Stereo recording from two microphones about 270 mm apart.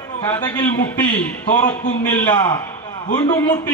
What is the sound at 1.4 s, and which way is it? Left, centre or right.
A man's voice, centre.